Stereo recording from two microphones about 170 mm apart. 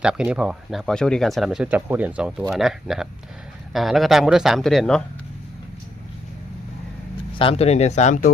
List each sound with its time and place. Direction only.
0.0 s speech: 5° right (ahead or behind)
7.3 s speech: 35° left (ahead or behind)